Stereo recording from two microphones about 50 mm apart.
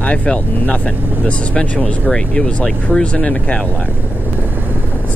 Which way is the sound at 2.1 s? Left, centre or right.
Centre.